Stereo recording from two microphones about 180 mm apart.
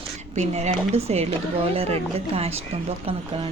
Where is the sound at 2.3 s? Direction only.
35° right (ahead or behind).